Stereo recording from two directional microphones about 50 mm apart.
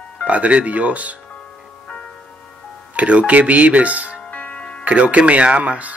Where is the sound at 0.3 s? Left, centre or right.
Right.